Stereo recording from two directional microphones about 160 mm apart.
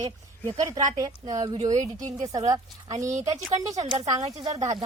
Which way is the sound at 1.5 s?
45° right (ahead or behind).